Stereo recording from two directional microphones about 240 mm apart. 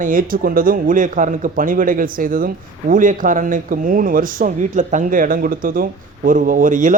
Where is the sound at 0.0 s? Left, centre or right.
Right.